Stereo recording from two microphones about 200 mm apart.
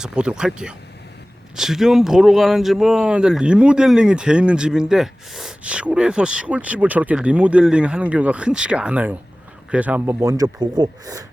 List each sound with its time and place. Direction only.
0.0 s speech: 5° right (ahead or behind)